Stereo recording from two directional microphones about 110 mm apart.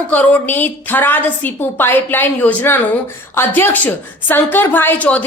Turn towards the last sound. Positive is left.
turn(degrees=15)  # may be behind; listen again after turning